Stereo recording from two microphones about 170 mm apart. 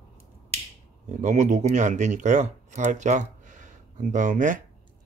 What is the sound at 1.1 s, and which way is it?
Speech, 45° right (ahead or behind).